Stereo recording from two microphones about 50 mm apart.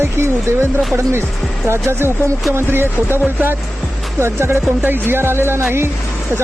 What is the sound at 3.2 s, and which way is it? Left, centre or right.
Speech, right.